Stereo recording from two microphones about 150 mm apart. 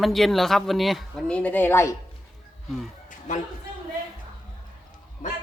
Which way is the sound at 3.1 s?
60° left (ahead or behind).